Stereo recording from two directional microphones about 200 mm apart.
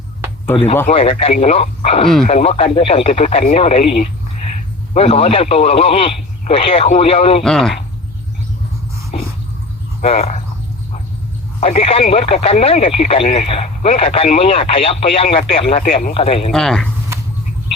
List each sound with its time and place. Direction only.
0.5 s speech: 10° left (ahead or behind)
0.9 s speech: 30° left (ahead or behind)
4.9 s speech: 30° left (ahead or behind)
7.4 s speech: centre (ahead or behind)
10.0 s speech: 30° left (ahead or behind)
11.6 s speech: 30° left (ahead or behind)
16.5 s speech: centre (ahead or behind)